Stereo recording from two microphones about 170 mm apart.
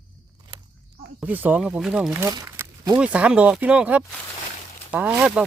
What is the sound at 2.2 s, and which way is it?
Crumpling, 20° right (ahead or behind).